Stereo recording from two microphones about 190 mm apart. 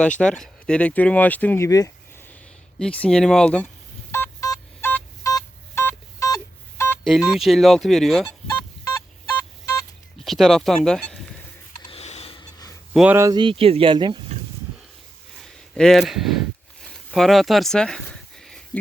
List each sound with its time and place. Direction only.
0.2 s speech: 5° left (ahead or behind)
2.7 s speech: 5° left (ahead or behind)
4.1 s a sound: 15° left (ahead or behind)
7.0 s speech: centre (ahead or behind)
10.2 s speech: centre (ahead or behind)
11.9 s snort: 35° left (ahead or behind)
12.9 s speech: 5° right (ahead or behind); by 14.2 s 25° right (ahead or behind)
15.4 s speech: centre (ahead or behind)
16.8 s a sound: 5° left (ahead or behind)